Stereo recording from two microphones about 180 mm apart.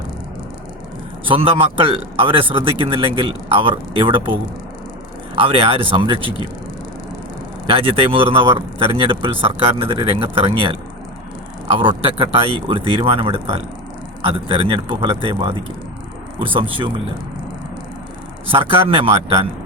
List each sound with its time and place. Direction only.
1.2 s a man's voice: 30° right (ahead or behind)
5.4 s a man's voice: 30° right (ahead or behind)
7.7 s speech: 30° right (ahead or behind)
11.8 s a man's voice: 30° right (ahead or behind)
18.5 s a man's voice: 30° right (ahead or behind)